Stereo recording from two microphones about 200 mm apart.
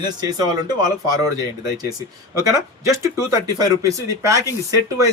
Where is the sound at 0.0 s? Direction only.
20° right (ahead or behind).